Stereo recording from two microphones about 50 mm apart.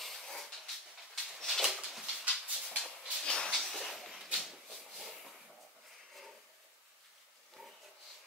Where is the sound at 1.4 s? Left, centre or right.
Centre.